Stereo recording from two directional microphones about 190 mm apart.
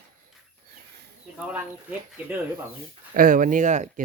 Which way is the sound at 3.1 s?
45° right (ahead or behind).